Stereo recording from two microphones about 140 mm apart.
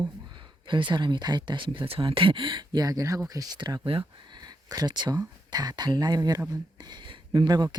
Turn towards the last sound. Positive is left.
turn(degrees=-30)  # may be behind; listen again after turning